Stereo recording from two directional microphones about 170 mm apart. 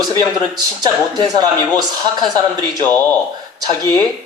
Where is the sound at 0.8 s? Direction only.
25° right (ahead or behind).